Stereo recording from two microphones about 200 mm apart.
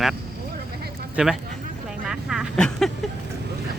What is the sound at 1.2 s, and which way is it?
Speech, 5° right (ahead or behind).